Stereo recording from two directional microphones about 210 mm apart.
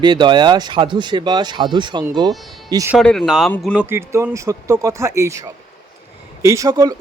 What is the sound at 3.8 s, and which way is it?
Speech, 10° right (ahead or behind).